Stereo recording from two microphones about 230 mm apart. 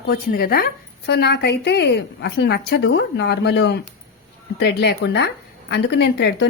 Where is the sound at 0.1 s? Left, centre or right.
Left.